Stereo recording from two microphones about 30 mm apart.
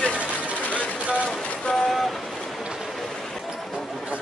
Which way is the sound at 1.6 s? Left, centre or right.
Left.